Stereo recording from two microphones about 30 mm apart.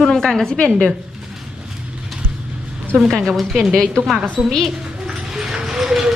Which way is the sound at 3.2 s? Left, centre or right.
Centre.